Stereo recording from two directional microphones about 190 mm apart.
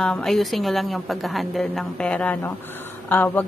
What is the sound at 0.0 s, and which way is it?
A woman's voice, 5° left (ahead or behind).